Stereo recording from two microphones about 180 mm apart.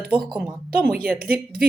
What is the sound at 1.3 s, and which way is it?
Speech, 55° right (ahead or behind).